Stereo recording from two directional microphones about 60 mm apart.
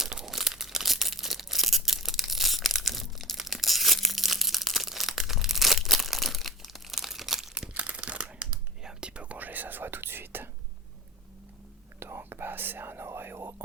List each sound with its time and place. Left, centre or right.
0.0 s tearing: centre
7.5 s crumpling: centre; by 10.5 s right
11.9 s whispering: right